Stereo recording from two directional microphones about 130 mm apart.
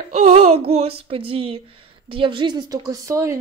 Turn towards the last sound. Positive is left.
turn(degrees=-20)  # may be behind; listen again after turning